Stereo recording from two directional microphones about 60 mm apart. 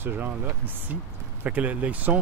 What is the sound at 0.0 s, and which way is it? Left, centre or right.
Speech, right.